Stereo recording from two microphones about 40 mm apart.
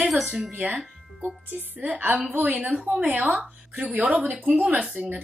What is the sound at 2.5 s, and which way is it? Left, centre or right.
A woman's voice, right.